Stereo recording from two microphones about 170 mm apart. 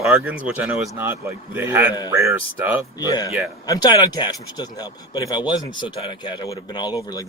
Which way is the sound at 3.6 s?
20° left (ahead or behind).